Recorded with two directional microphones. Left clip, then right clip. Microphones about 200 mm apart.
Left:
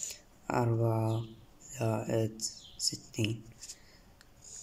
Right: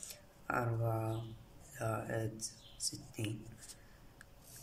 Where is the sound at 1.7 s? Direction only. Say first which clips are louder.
Left 6 dB; 20° left (ahead or behind).